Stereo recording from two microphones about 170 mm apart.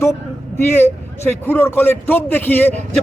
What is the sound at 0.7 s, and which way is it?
A man's voice, 10° left (ahead or behind).